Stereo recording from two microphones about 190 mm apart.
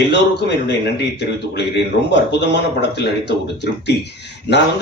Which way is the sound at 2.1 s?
65° left (ahead or behind).